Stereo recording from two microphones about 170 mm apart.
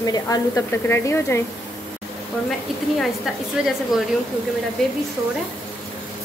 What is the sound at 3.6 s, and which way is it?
Speech, 5° right (ahead or behind).